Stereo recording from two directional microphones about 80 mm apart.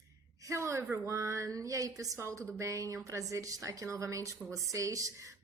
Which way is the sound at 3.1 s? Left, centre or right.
Right.